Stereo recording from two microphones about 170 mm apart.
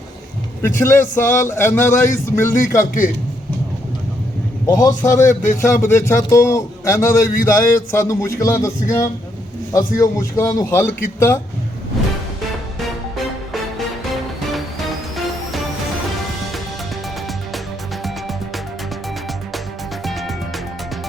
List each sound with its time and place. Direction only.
0.6 s a man's voice: 15° left (ahead or behind)
4.6 s a man's voice: 20° left (ahead or behind)
18.0 s music: centre (ahead or behind)
20.1 s music: centre (ahead or behind)